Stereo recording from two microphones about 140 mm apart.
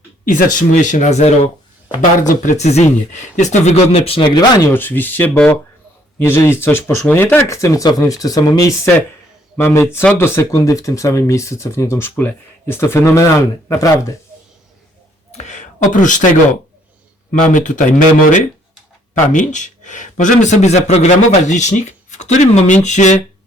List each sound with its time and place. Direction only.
0.3 s speech: 75° left (ahead or behind); by 1.3 s 55° left (ahead or behind)
2.2 s speech: 65° left (ahead or behind); by 4.3 s 45° left (ahead or behind)
4.4 s speech: 30° left (ahead or behind)
4.7 s speech: 15° left (ahead or behind)
15.3 s speech: 55° left (ahead or behind)